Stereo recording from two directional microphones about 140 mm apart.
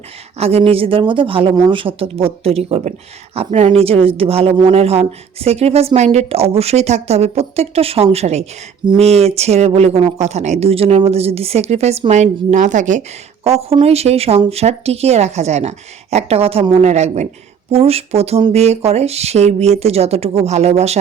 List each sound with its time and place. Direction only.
0.3 s a woman's voice: 45° right (ahead or behind)